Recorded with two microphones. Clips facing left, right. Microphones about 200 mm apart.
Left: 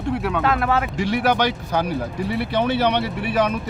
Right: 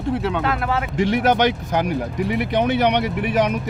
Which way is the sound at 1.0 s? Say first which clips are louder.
Right 3 dB; 20° right (ahead or behind).